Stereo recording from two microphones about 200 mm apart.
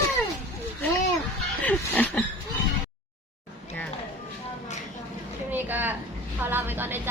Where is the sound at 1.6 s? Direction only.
5° left (ahead or behind).